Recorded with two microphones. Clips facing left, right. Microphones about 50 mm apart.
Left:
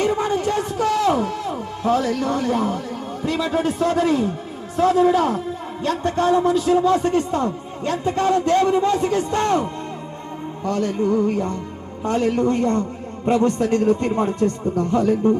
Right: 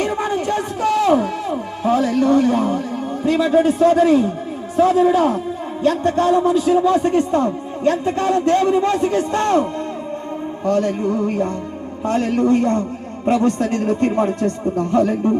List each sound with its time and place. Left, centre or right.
0.0 s a sound: right
2.6 s a man's voice: centre
3.2 s a man's voice: right
3.8 s a man's voice: centre; by 9.6 s right
10.7 s a man's voice: right